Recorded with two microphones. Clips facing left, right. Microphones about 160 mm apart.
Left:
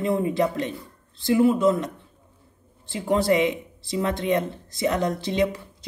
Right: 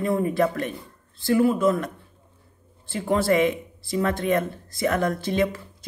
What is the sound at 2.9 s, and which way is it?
Speech, 20° left (ahead or behind).